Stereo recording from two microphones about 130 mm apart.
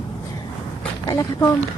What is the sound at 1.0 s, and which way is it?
Speech, 25° left (ahead or behind).